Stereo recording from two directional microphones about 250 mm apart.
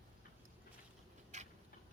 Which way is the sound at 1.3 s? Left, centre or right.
Right.